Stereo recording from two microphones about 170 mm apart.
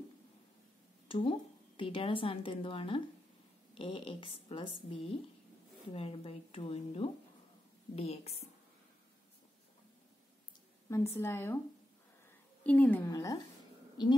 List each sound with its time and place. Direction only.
1.0 s a sound: 30° left (ahead or behind)
1.8 s a woman's voice: 30° left (ahead or behind)
5.9 s a woman's voice: 35° left (ahead or behind)
10.9 s a woman's voice: 15° left (ahead or behind)
12.6 s a woman's voice: 10° left (ahead or behind); by 14.1 s 25° left (ahead or behind)